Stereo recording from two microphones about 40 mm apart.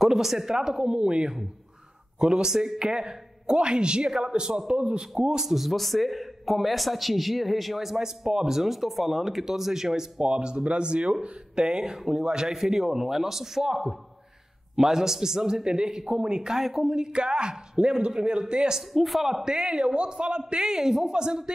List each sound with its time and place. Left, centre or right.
0.0 s a man's voice: centre; by 5.0 s right
5.1 s speech: centre
10.2 s speech: right
12.5 s a man's voice: centre
18.8 s speech: centre
19.4 s speech: centre